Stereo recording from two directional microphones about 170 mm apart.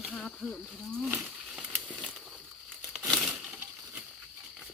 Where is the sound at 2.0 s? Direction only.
5° left (ahead or behind).